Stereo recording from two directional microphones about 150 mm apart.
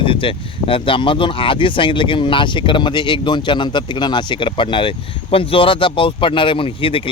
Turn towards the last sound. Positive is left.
turn(degrees=35)  # may be behind; listen again after turning